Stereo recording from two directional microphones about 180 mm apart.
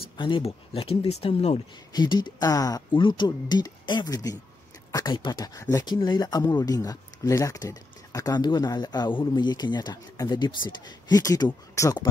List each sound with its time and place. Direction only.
0.2 s speech: 30° left (ahead or behind)
1.9 s speech: 25° left (ahead or behind)